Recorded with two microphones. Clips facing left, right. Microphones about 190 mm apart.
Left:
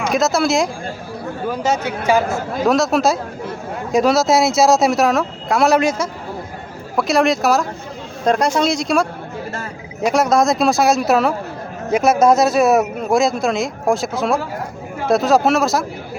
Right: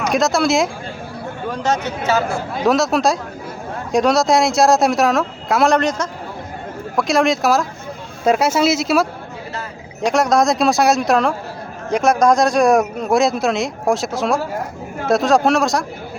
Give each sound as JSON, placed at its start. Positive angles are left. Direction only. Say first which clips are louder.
{"t": 0.1, "sound": "a man's voice", "louder": "even", "side_deg": 0}
{"t": 2.6, "sound": "speech", "louder": "even", "side_deg": 0}